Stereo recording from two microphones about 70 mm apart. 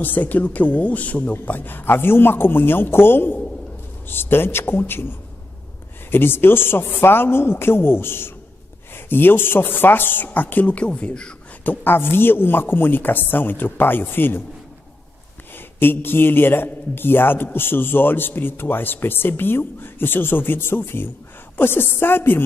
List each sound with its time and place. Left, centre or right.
0.0 s speech: left
11.6 s speech: left
15.5 s speech: left